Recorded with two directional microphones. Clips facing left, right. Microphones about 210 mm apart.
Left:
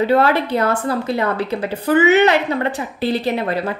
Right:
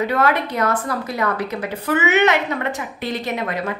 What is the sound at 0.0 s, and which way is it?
A woman's voice, 30° left (ahead or behind).